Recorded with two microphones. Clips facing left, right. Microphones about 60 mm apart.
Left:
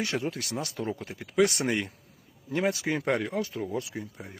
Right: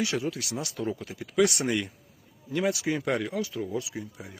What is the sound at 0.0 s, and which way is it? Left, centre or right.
Speech, left.